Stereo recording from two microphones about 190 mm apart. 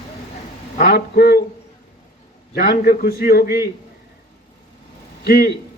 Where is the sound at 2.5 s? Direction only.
50° left (ahead or behind).